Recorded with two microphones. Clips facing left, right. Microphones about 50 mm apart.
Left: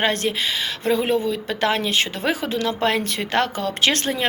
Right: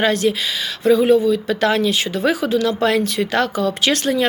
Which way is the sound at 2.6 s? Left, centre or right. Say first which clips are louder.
Right 2 dB; left.